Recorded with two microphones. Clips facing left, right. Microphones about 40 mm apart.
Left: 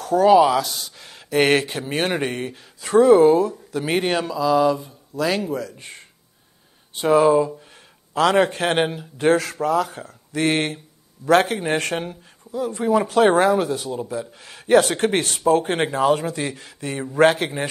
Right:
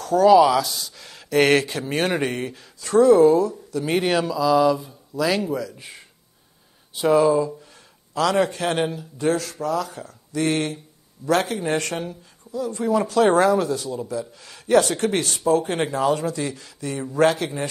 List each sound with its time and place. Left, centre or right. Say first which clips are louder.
0.0 s speech: even; left
0.4 s speech: even; centre
3.3 s speech: left 1 dB; left
4.0 s speech: right 1 dB; centre
7.2 s speech: left 4 dB; left